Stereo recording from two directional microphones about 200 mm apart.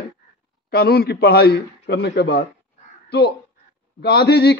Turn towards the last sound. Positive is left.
turn(degrees=55)  # may be behind; listen again after turning